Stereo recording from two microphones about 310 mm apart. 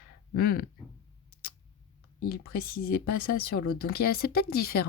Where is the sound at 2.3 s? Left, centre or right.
Left.